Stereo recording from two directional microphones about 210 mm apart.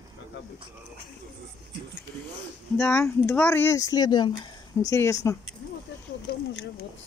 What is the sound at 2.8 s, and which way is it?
Speech, 10° left (ahead or behind).